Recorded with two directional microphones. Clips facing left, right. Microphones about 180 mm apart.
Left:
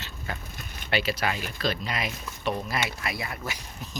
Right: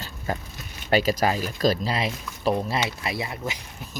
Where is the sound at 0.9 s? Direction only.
40° right (ahead or behind); by 3.6 s 20° right (ahead or behind).